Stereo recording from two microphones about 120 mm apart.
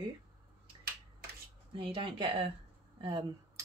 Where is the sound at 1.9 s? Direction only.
45° right (ahead or behind).